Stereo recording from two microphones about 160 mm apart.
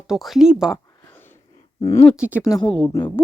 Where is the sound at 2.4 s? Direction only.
20° left (ahead or behind).